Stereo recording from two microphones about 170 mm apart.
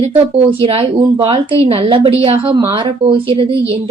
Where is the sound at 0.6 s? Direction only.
30° right (ahead or behind).